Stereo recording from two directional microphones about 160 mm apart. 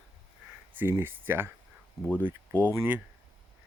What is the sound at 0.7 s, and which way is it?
Speech, 15° right (ahead or behind).